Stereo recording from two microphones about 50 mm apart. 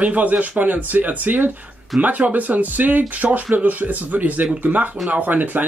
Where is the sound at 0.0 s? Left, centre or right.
Right.